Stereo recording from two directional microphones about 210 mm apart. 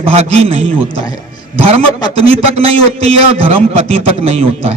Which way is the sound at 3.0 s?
30° right (ahead or behind).